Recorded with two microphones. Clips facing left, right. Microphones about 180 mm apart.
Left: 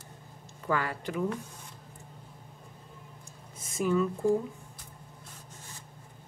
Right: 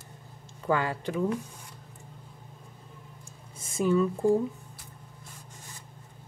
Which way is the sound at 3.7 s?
30° right (ahead or behind).